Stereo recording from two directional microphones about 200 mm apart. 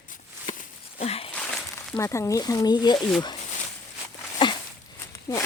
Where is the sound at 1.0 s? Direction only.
30° left (ahead or behind).